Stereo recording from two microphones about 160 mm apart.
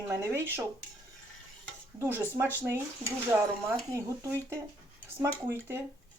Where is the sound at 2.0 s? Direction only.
15° right (ahead or behind).